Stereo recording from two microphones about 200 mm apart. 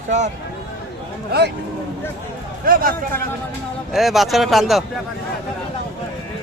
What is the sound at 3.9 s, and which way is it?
Speech, centre (ahead or behind).